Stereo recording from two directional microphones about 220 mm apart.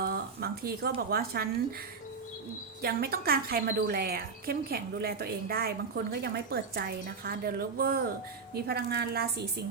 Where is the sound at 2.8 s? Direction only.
45° right (ahead or behind).